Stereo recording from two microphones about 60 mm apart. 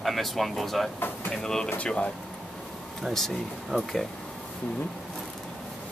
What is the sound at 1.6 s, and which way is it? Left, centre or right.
Speech, left.